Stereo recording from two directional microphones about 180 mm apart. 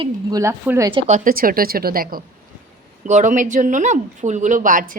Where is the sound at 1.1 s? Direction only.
50° right (ahead or behind).